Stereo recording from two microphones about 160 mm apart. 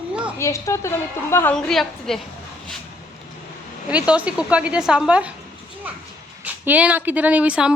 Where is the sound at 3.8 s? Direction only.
10° right (ahead or behind).